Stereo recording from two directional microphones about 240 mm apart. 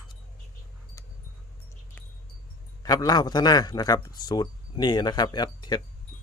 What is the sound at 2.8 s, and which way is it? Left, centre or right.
A man's voice, centre.